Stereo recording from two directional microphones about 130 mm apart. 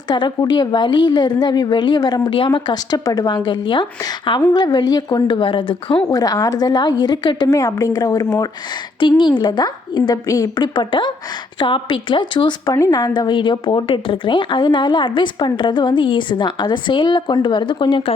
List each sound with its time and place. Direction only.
0.1 s a woman's voice: 35° left (ahead or behind)
6.1 s a woman's voice: 30° left (ahead or behind)
9.0 s a woman's voice: 40° left (ahead or behind)